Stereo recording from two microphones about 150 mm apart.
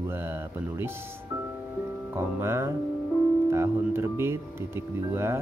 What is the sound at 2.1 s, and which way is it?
Speech, 20° right (ahead or behind).